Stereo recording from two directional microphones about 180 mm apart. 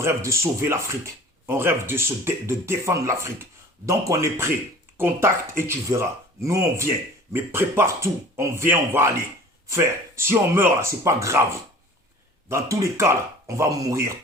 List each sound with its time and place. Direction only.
0.0 s speech: 15° right (ahead or behind)
12.5 s speech: 15° right (ahead or behind)